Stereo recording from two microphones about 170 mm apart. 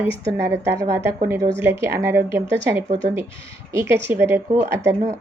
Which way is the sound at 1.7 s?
15° right (ahead or behind).